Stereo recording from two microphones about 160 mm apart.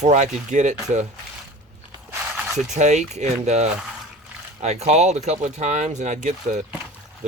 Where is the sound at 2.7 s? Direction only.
45° right (ahead or behind).